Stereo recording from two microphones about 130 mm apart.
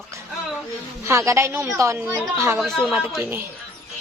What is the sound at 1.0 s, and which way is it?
A woman's voice, 20° right (ahead or behind).